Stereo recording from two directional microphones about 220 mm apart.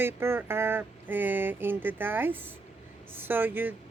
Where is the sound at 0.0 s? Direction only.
10° right (ahead or behind).